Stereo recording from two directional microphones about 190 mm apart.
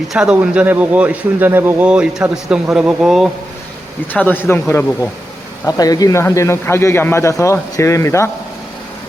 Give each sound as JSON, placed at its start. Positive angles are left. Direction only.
{"t": 0.1, "sound": "a man's voice", "side_deg": -5}
{"t": 4.1, "sound": "a man's voice", "side_deg": 10}